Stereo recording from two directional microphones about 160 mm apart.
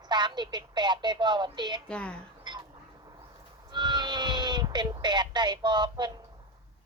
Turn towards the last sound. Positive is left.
turn(degrees=-25)  # may be behind; listen again after turning